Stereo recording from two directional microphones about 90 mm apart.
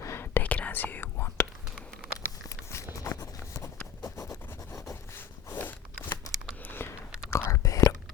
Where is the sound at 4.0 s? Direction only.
35° left (ahead or behind).